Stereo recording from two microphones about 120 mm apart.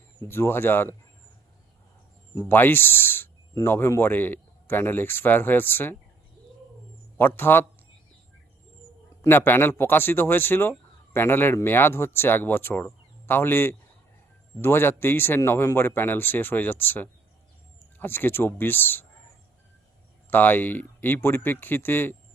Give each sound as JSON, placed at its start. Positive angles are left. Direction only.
{"t": 0.2, "sound": "speech", "side_deg": 20}
{"t": 2.5, "sound": "speech", "side_deg": 15}
{"t": 7.2, "sound": "speech", "side_deg": 15}
{"t": 9.2, "sound": "speech", "side_deg": 20}
{"t": 20.3, "sound": "speech", "side_deg": 15}